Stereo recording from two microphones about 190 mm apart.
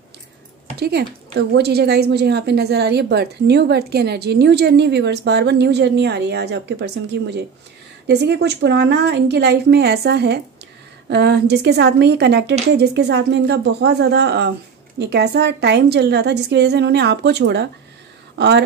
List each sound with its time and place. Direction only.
0.7 s a woman's voice: 60° right (ahead or behind)